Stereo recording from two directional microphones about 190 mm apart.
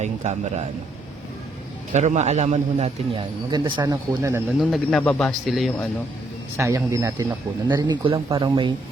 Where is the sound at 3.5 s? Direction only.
25° right (ahead or behind).